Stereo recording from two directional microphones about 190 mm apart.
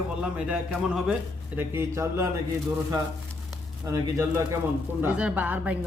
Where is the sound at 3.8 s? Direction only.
15° right (ahead or behind).